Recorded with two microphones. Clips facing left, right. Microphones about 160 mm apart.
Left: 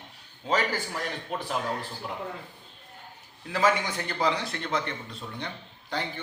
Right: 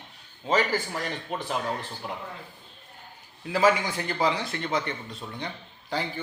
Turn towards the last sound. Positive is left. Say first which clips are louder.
# right 2 dB
turn(degrees=-5)  # may be behind; listen again after turning